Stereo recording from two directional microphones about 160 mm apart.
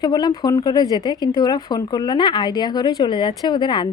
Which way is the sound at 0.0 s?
25° left (ahead or behind).